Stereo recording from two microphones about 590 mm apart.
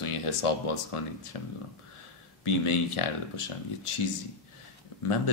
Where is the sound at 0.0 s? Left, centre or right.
Left.